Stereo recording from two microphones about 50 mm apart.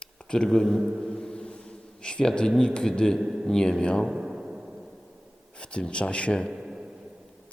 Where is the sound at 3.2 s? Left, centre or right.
Centre.